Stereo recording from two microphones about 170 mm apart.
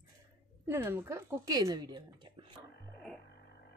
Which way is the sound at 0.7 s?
15° right (ahead or behind).